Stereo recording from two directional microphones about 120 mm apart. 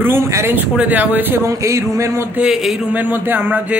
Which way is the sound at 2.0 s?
20° right (ahead or behind).